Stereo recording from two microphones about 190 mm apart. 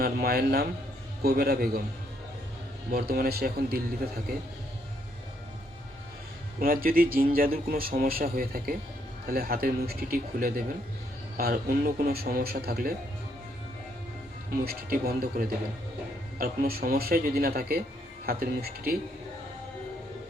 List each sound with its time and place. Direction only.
0.0 s speech: 55° right (ahead or behind)
2.9 s speech: 55° right (ahead or behind)
6.6 s speech: 50° right (ahead or behind)
14.6 s speech: 55° right (ahead or behind)